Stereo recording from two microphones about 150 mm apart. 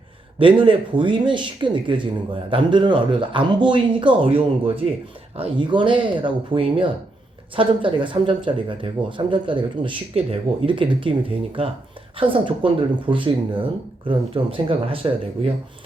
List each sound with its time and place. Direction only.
0.3 s speech: 35° right (ahead or behind)